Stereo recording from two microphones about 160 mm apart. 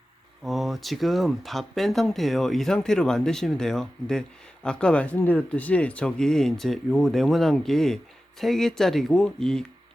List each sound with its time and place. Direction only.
0.4 s speech: centre (ahead or behind)